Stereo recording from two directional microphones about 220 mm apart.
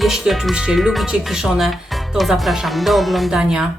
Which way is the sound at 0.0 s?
Centre (ahead or behind).